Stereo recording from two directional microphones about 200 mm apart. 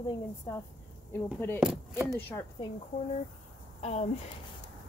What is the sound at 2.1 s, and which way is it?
Speech, 10° left (ahead or behind).